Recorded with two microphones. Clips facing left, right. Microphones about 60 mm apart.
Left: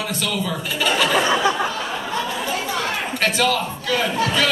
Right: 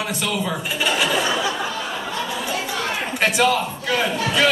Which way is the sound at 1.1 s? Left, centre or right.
Left.